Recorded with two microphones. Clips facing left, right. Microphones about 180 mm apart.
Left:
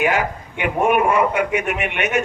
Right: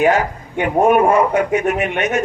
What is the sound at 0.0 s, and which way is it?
A man's voice, 40° right (ahead or behind).